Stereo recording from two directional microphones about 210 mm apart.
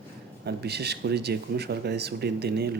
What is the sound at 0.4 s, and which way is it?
Speech, 50° right (ahead or behind).